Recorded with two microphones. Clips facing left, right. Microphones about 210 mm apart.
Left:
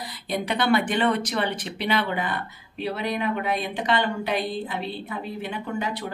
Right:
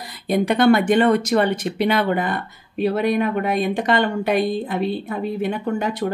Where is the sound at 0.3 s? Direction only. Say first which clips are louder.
Right 8 dB; 50° right (ahead or behind).